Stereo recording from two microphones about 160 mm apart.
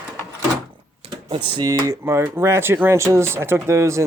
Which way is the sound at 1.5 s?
25° right (ahead or behind).